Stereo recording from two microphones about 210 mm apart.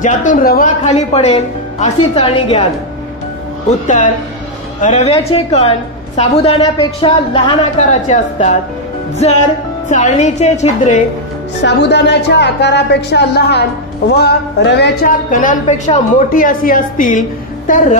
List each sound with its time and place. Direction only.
0.0 s speech: 40° left (ahead or behind)
3.8 s a woman's voice: 35° left (ahead or behind)
7.8 s speech: 35° left (ahead or behind)
9.8 s speech: 35° left (ahead or behind)
11.6 s a woman's voice: 55° left (ahead or behind)
15.3 s speech: 35° left (ahead or behind)